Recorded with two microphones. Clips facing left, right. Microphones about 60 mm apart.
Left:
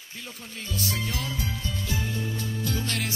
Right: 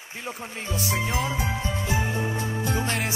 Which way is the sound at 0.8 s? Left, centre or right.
Right.